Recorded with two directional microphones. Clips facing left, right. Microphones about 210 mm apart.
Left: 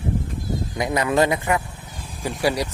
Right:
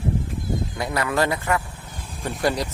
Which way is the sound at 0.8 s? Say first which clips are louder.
Left 4 dB; 20° left (ahead or behind).